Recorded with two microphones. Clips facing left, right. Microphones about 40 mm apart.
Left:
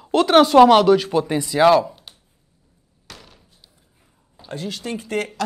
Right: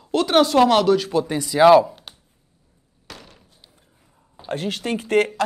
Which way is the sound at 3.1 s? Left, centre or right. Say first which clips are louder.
Right 2 dB; right.